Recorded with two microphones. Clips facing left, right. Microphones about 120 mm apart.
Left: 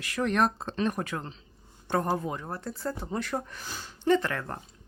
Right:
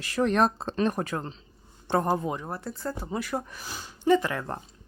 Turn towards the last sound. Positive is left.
turn(degrees=-15)  # may be behind; listen again after turning